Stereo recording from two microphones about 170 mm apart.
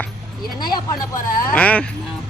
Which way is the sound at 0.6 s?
25° left (ahead or behind).